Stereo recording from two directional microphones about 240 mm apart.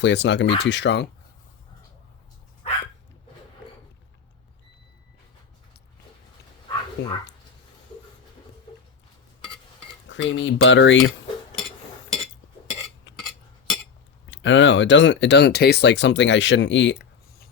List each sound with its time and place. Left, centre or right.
0.0 s speech: left
7.0 s speech: left
10.1 s speech: left
13.1 s cutlery: centre
14.3 s speech: left